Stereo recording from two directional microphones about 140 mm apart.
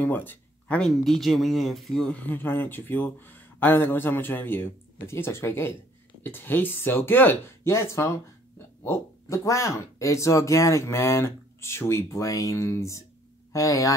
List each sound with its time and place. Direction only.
0.0 s speech: 15° left (ahead or behind)